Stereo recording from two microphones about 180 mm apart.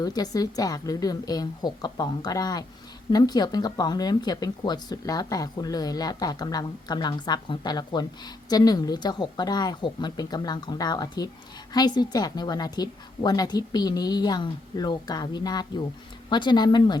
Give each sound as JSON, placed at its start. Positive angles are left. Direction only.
{"t": 0.0, "sound": "speech", "side_deg": 20}